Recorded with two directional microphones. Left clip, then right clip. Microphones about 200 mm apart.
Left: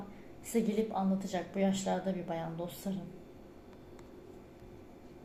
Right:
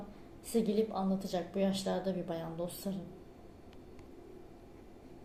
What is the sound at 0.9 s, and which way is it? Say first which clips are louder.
A woman's voice: left 1 dB; 20° right (ahead or behind).